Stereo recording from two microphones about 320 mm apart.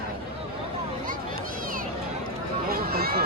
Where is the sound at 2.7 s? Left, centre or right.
Right.